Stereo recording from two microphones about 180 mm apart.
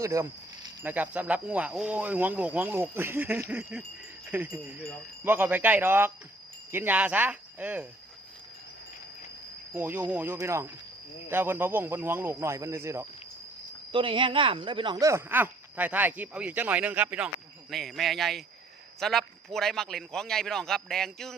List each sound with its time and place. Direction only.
0.0 s a sound: 15° right (ahead or behind)
0.9 s speech: 10° right (ahead or behind)
9.7 s speech: 10° right (ahead or behind)
13.9 s a man's voice: 25° right (ahead or behind); by 21.3 s centre (ahead or behind)